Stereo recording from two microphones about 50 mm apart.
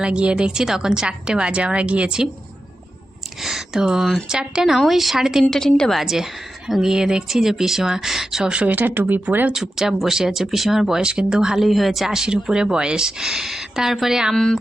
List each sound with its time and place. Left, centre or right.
0.0 s a woman's voice: right
3.4 s a sound: centre
4.3 s speech: centre
5.5 s a woman's voice: centre
5.9 s speech: centre
8.6 s speech: right
9.5 s speech: centre
11.0 s speech: centre
14.3 s a woman's voice: centre